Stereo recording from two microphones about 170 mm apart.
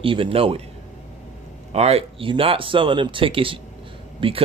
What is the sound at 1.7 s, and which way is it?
Speech, 40° right (ahead or behind).